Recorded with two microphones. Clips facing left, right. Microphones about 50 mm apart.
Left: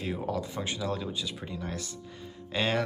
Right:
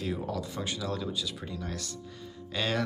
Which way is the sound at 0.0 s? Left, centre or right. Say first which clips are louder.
Left 1 dB; left.